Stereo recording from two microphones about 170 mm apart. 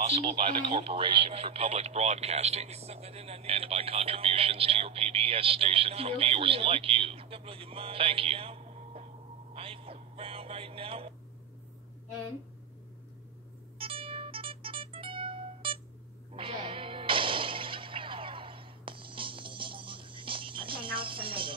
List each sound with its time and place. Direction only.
0.0 s speech: 35° right (ahead or behind)
9.5 s a sound: 35° right (ahead or behind)
13.7 s music: 30° right (ahead or behind)